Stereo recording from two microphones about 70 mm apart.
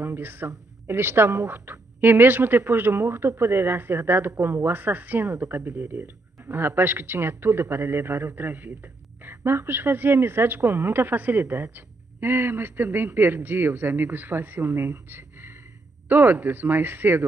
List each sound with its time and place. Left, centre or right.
0.0 s speech: right